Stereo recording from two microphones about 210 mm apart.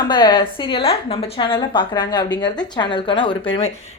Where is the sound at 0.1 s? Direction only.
20° left (ahead or behind).